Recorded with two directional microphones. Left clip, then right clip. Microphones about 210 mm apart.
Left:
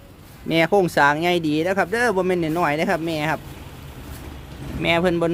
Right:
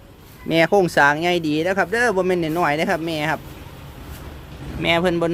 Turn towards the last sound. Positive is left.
turn(degrees=0)  # may be behind; listen again after turning